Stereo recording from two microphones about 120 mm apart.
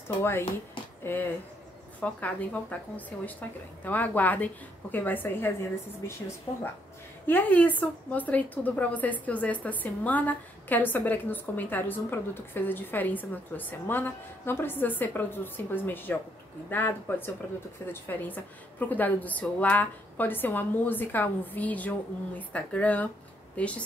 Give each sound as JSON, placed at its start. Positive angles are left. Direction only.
{"t": 0.2, "sound": "a woman's voice", "side_deg": 20}